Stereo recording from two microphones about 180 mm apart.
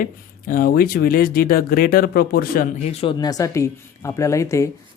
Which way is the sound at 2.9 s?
35° left (ahead or behind).